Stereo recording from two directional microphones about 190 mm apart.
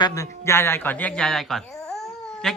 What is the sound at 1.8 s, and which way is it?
Babbling, centre (ahead or behind).